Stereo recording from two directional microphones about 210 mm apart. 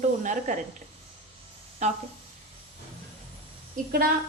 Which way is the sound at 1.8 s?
35° right (ahead or behind).